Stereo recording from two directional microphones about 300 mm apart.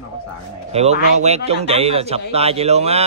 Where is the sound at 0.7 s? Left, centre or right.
Right.